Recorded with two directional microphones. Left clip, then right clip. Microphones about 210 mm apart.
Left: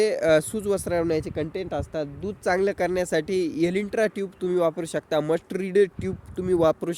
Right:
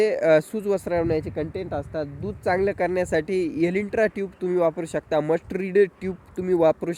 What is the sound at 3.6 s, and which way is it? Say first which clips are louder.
Speech: right 3 dB; 5° left (ahead or behind).